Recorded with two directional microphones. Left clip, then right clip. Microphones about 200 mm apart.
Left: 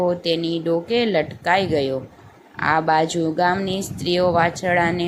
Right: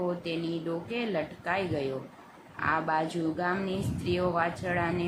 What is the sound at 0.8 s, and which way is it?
A woman's voice, 25° left (ahead or behind).